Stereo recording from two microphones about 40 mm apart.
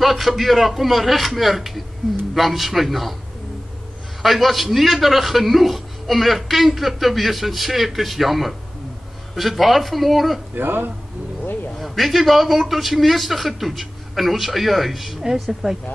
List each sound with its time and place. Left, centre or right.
0.0 s a man's voice: centre
4.2 s a man's voice: centre
10.5 s speech: right
11.8 s a man's voice: centre